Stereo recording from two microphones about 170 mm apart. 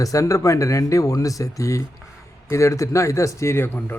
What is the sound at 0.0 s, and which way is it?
A man's voice, 20° left (ahead or behind).